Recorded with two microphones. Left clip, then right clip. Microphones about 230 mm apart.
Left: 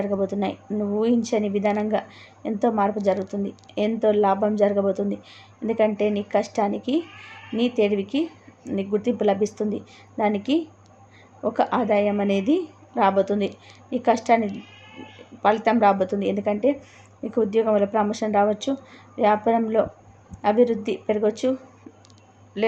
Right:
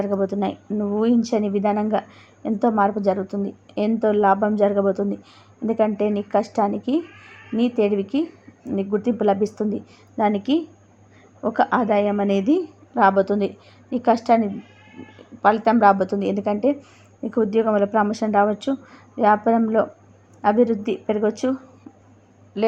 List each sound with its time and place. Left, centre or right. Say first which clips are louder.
0.0 s a woman's voice: right 2 dB; centre